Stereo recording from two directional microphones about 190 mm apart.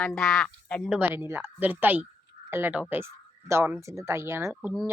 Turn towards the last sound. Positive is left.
turn(degrees=-10)  # may be behind; listen again after turning